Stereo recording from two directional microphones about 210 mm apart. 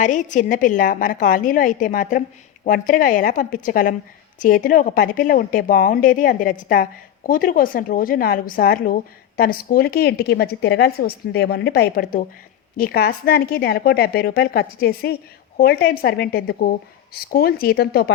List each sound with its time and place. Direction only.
0.0 s a woman's voice: 35° left (ahead or behind)